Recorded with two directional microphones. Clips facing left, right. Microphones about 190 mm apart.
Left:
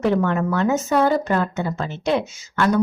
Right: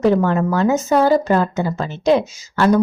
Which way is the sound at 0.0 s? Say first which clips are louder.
Right 4 dB; 35° right (ahead or behind).